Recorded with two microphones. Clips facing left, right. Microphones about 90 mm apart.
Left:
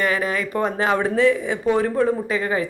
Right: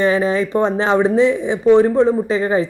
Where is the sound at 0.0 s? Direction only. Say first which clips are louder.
Right 6 dB; 25° right (ahead or behind).